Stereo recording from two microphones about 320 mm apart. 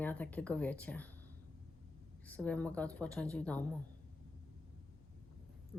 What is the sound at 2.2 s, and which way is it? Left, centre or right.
A woman's voice, centre.